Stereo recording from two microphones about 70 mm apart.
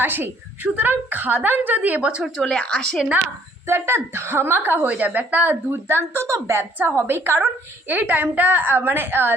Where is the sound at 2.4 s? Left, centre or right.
Centre.